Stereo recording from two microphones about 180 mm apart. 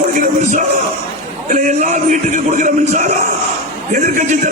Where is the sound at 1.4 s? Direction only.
45° right (ahead or behind).